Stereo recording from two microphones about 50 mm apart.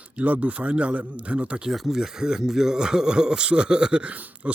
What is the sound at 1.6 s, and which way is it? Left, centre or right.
Speech, centre.